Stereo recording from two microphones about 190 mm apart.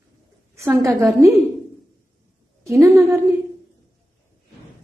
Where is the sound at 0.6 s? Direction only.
15° right (ahead or behind).